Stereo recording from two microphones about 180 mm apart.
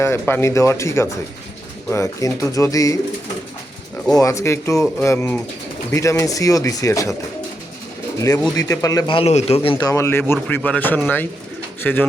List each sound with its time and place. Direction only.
0.0 s speech: 15° left (ahead or behind)
4.1 s speech: 20° left (ahead or behind)
8.2 s a man's voice: 20° left (ahead or behind)